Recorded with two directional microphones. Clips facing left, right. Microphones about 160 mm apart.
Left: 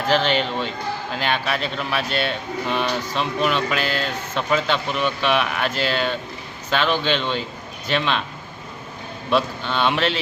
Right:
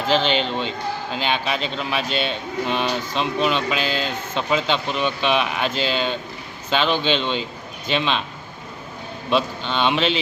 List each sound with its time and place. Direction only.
0.1 s speech: 25° right (ahead or behind)
9.3 s speech: 20° right (ahead or behind)